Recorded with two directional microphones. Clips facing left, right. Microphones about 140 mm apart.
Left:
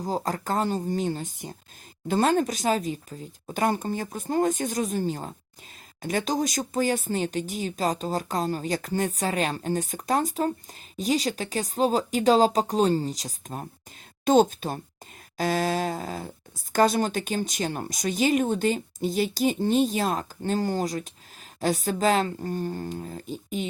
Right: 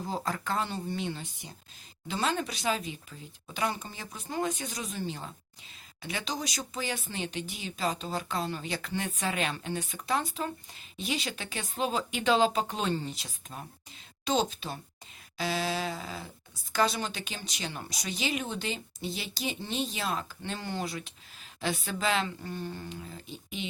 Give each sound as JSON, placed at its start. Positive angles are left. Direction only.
{"t": 0.0, "sound": "speech", "side_deg": 40}